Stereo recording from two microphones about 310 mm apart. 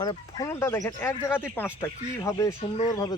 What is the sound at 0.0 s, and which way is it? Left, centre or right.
Speech, centre.